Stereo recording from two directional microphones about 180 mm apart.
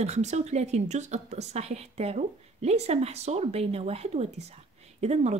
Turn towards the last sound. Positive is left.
turn(degrees=-35)  # may be behind; listen again after turning